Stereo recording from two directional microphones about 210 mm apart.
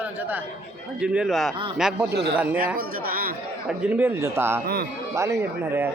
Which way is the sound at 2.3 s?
5° right (ahead or behind).